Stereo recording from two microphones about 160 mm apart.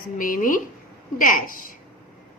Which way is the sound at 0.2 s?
60° left (ahead or behind).